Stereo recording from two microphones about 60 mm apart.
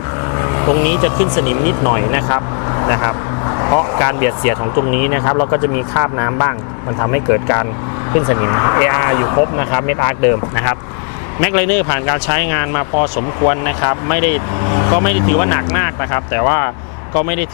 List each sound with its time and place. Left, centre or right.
0.3 s speech: left